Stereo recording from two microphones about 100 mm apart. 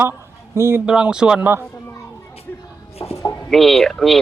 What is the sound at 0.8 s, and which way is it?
Speech, 10° right (ahead or behind).